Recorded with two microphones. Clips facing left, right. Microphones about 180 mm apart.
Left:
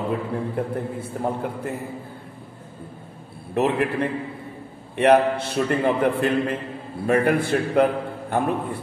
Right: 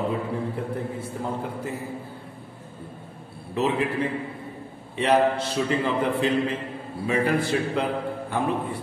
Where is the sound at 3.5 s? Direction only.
60° left (ahead or behind).